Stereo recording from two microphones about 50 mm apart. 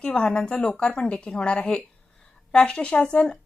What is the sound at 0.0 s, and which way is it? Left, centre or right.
A woman's voice, centre.